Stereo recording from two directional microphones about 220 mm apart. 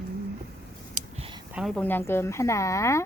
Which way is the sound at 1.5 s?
Centre (ahead or behind).